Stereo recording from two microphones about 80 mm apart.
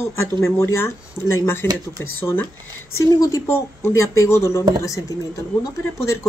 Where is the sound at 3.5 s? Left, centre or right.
Left.